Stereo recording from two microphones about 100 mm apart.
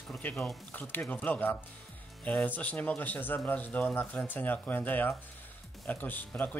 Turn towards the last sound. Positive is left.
turn(degrees=15)  # may be behind; listen again after turning